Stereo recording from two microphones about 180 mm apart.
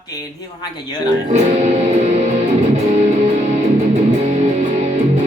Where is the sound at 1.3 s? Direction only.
35° right (ahead or behind).